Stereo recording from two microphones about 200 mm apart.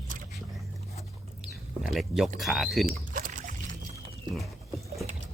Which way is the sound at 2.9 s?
40° right (ahead or behind).